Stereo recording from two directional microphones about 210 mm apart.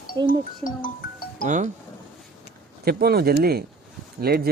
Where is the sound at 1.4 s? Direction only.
35° right (ahead or behind).